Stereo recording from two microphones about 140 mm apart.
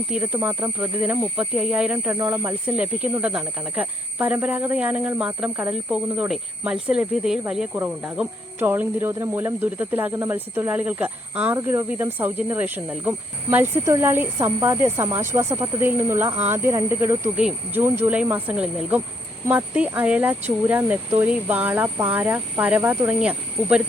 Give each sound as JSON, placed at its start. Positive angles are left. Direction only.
{"t": 0.1, "sound": "speech", "side_deg": -10}
{"t": 2.1, "sound": "speech", "side_deg": -20}